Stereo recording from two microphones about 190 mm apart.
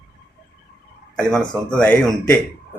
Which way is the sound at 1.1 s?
5° left (ahead or behind).